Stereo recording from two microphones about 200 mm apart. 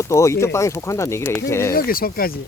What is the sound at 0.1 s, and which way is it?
Speech, 15° left (ahead or behind).